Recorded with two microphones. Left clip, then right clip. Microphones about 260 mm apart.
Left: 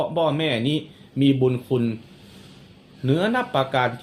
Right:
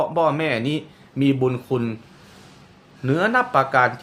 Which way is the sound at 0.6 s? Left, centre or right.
Right.